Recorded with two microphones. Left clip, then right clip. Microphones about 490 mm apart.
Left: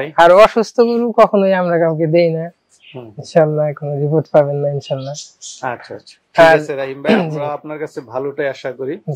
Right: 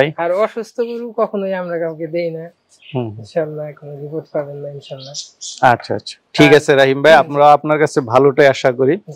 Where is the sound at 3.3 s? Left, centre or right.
Left.